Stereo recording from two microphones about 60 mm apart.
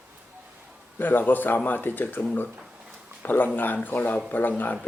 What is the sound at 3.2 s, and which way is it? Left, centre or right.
A man's voice, left.